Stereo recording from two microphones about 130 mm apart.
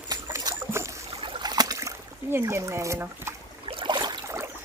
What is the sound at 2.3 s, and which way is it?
Speech, 20° right (ahead or behind).